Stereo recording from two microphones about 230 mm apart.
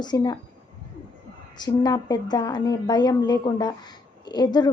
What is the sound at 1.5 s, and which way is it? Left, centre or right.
A woman's voice, centre.